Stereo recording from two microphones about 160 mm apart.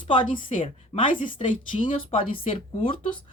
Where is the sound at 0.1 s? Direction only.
30° left (ahead or behind).